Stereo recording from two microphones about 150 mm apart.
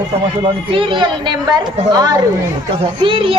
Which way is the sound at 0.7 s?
35° right (ahead or behind).